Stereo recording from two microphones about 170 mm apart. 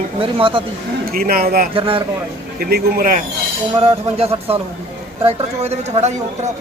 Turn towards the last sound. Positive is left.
turn(degrees=-40)  # may be behind; listen again after turning